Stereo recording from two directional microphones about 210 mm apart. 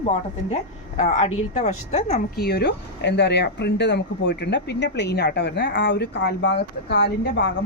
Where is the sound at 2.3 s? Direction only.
50° left (ahead or behind).